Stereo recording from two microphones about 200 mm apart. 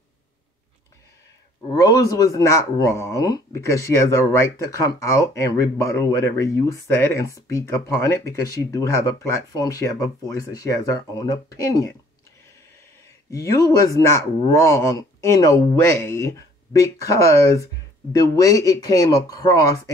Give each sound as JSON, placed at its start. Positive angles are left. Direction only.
{"t": 1.7, "sound": "speech", "side_deg": 20}
{"t": 13.3, "sound": "speech", "side_deg": 15}